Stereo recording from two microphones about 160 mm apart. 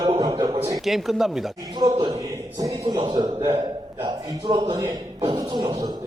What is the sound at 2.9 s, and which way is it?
A man's voice, 30° right (ahead or behind).